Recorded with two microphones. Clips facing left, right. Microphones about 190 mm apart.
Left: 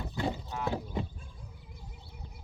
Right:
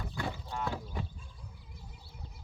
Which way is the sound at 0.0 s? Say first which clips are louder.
Left 5 dB; 20° left (ahead or behind).